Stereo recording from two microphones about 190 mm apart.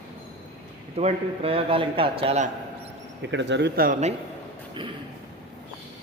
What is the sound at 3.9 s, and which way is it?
Speech, 35° right (ahead or behind).